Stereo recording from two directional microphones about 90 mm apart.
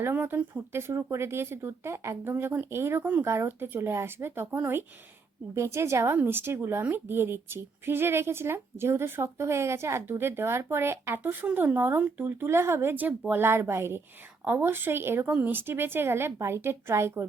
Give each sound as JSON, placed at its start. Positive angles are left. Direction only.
{"t": 0.0, "sound": "a woman's voice", "side_deg": -25}